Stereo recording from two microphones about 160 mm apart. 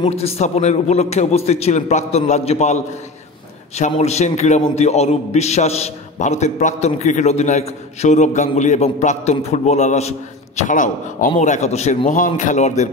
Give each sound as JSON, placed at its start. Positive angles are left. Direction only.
{"t": 0.1, "sound": "a man's voice", "side_deg": 40}